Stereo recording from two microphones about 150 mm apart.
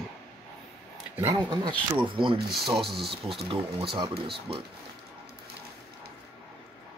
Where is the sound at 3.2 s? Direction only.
35° right (ahead or behind).